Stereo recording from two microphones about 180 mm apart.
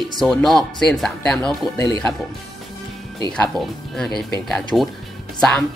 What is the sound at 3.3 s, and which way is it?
Speech, 5° left (ahead or behind).